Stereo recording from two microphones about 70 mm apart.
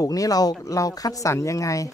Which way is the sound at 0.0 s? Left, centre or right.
Left.